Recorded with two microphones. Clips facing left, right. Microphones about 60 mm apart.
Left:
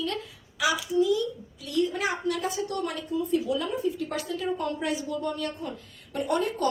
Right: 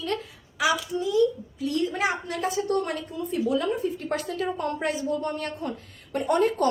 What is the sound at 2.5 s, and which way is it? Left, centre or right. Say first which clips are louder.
A woman's voice: right 4 dB; right.